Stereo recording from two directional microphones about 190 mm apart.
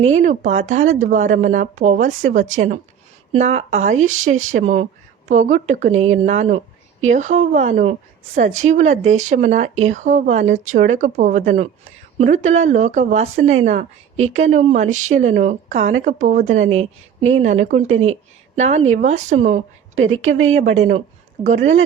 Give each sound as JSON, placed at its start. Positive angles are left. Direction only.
{"t": 0.0, "sound": "speech", "side_deg": -40}